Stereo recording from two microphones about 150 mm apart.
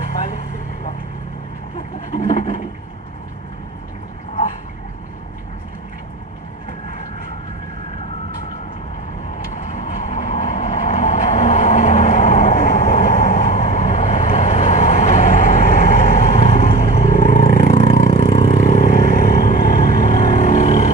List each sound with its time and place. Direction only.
0.0 s vehicle: 55° left (ahead or behind)
2.1 s a sound: 55° left (ahead or behind)
9.5 s vehicle: 55° left (ahead or behind)